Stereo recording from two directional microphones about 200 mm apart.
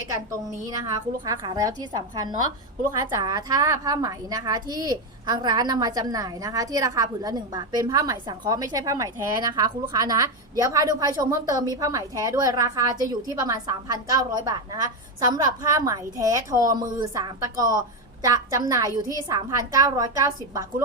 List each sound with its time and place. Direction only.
0.7 s a woman's voice: 20° right (ahead or behind)